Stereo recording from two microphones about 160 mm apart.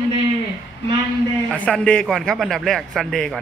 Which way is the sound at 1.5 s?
5° left (ahead or behind).